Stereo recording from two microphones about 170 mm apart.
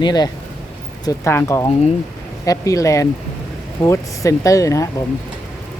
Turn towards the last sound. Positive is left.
turn(degrees=20)  # may be behind; listen again after turning